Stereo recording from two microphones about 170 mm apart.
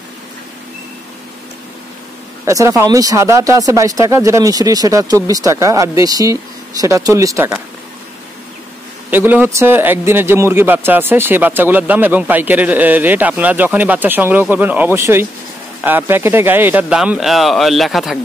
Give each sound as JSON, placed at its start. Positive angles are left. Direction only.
{"t": 2.4, "sound": "speech", "side_deg": -20}
{"t": 9.1, "sound": "a man's voice", "side_deg": -10}